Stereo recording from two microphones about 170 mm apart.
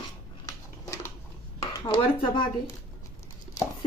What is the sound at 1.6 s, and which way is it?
Speech, 25° left (ahead or behind).